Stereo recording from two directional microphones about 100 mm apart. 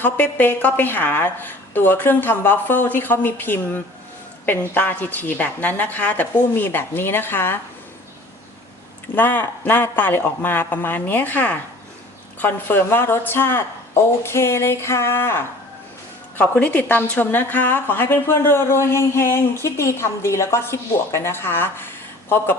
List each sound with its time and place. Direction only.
0.0 s a woman's voice: 20° left (ahead or behind)
9.1 s a woman's voice: 20° left (ahead or behind)